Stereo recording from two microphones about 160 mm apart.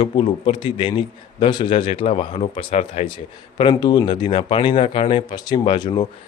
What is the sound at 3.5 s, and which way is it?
A man's voice, 30° left (ahead or behind).